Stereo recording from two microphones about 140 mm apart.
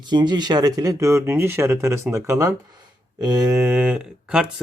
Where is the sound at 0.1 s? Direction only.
30° right (ahead or behind).